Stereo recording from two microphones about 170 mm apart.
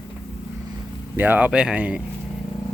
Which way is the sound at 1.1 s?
10° right (ahead or behind).